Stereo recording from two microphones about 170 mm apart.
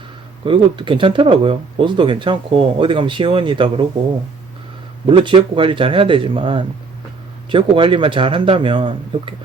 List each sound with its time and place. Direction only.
0.4 s speech: 30° right (ahead or behind)
5.0 s speech: 30° right (ahead or behind)